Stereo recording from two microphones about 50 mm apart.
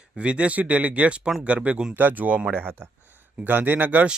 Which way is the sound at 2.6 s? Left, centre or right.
Right.